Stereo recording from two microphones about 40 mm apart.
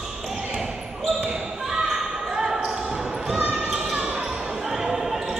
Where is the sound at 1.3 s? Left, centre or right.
Centre.